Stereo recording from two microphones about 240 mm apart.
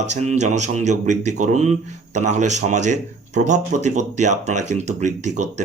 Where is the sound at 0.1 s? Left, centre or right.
Right.